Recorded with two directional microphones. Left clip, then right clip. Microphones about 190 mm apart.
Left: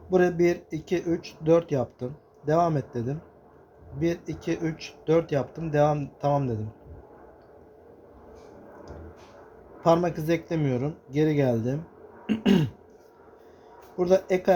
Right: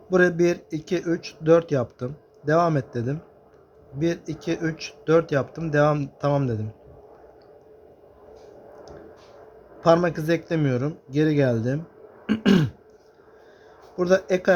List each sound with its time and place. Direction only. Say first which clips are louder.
0.1 s speech: right 3 dB; 30° right (ahead or behind)
9.8 s speech: right 3 dB; 30° right (ahead or behind)
12.2 s throat clearing: right 3 dB; 35° right (ahead or behind)
13.9 s speech: right 2 dB; 30° right (ahead or behind)